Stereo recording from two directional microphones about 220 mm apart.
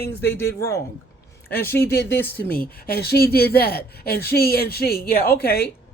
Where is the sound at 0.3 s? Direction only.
10° left (ahead or behind).